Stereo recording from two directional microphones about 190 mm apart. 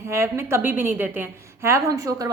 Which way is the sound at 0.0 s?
15° right (ahead or behind).